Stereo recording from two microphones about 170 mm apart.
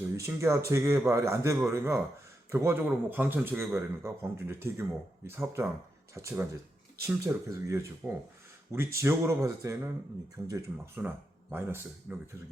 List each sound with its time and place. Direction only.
0.2 s a man's voice: 15° right (ahead or behind)